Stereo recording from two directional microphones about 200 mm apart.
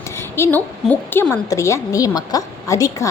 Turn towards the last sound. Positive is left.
turn(degrees=15)  # may be behind; listen again after turning